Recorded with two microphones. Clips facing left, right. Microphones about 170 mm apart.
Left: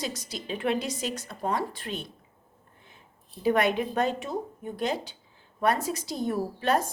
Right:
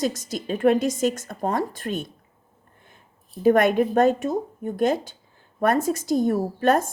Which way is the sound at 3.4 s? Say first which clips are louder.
Right 7 dB; 50° right (ahead or behind).